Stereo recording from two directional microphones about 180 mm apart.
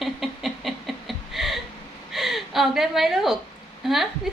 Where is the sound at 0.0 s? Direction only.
Centre (ahead or behind).